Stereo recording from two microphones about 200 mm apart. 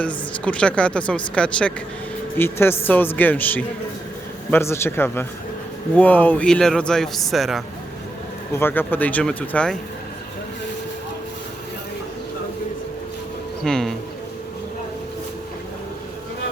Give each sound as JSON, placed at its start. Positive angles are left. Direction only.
{"t": 0.4, "sound": "a man's voice", "side_deg": 5}
{"t": 8.5, "sound": "a man's voice", "side_deg": 10}
{"t": 13.7, "sound": "a man's voice", "side_deg": 5}